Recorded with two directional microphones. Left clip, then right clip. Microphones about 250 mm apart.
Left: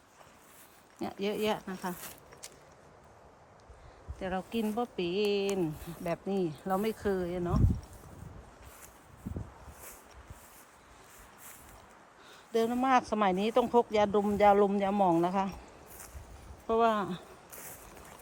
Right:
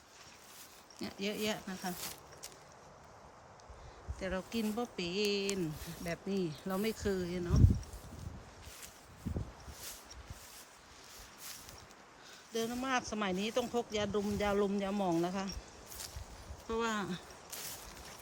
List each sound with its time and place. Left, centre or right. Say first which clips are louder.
0.9 s speech: left 6 dB; centre
4.2 s speech: left 4 dB; centre
12.5 s speech: left 9 dB; centre
16.6 s speech: left 9 dB; centre